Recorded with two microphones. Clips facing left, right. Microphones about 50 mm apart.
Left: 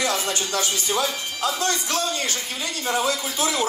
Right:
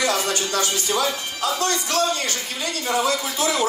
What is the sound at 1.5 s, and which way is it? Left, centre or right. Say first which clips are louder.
Speech: right 2 dB; right.